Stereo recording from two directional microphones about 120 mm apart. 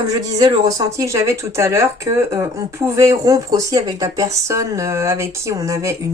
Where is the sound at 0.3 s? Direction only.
35° right (ahead or behind).